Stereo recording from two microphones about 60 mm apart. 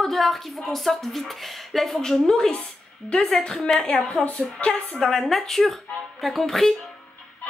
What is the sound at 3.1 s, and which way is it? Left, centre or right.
A woman's voice, centre.